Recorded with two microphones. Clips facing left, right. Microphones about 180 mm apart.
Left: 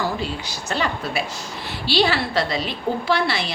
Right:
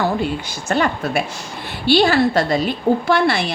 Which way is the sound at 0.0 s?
55° right (ahead or behind).